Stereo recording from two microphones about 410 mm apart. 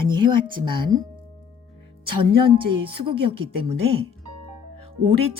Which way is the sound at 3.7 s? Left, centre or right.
Right.